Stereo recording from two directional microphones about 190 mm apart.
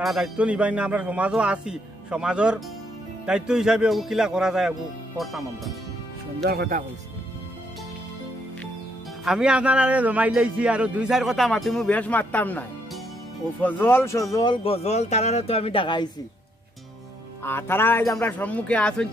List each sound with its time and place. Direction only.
0.0 s a man's voice: 5° right (ahead or behind)
6.4 s speech: 55° right (ahead or behind)
9.2 s a man's voice: 5° right (ahead or behind); by 16.1 s 25° left (ahead or behind)
17.4 s speech: 10° left (ahead or behind)